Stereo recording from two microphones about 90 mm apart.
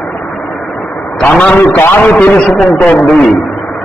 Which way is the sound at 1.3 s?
15° left (ahead or behind).